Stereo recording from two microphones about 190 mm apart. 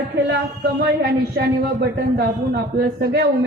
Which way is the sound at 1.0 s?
55° right (ahead or behind).